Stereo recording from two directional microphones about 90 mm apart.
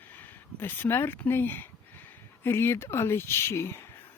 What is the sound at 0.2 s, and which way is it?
Speech, 25° left (ahead or behind).